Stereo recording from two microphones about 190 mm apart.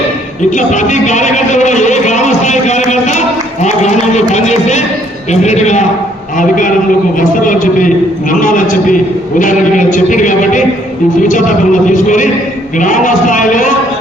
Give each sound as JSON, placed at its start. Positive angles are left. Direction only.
{"t": 0.5, "sound": "speech", "side_deg": 40}